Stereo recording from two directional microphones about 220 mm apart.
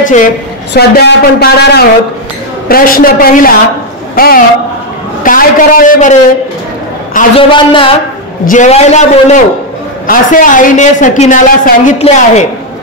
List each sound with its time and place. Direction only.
0.0 s a woman's voice: 35° left (ahead or behind)
7.2 s a man's voice: 25° left (ahead or behind)